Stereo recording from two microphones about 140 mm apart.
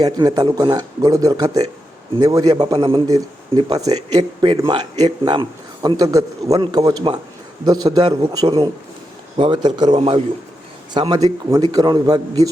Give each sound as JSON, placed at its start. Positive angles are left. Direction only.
{"t": 0.0, "sound": "speech", "side_deg": -25}
{"t": 3.5, "sound": "speech", "side_deg": -40}
{"t": 3.8, "sound": "speech", "side_deg": -25}
{"t": 10.9, "sound": "speech", "side_deg": -30}